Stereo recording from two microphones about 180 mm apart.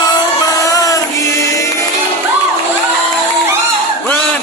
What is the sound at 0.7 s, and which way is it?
Music, 20° left (ahead or behind).